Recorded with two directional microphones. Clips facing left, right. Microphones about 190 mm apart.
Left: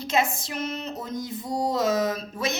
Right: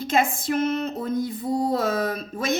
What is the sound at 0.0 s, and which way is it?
Speech, 50° right (ahead or behind).